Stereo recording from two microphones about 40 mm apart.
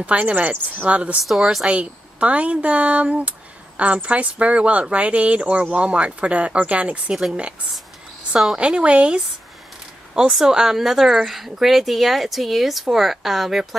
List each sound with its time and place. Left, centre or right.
0.0 s speech: right
1.2 s speech: centre
1.7 s speech: right
8.5 s speech: right
10.3 s speech: centre